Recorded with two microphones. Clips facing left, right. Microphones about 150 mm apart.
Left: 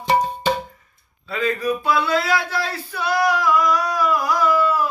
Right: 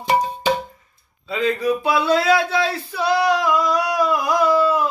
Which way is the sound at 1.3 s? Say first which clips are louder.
Right 2 dB; 20° right (ahead or behind).